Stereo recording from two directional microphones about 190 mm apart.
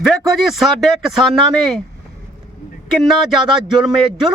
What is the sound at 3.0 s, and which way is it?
Speech, centre (ahead or behind).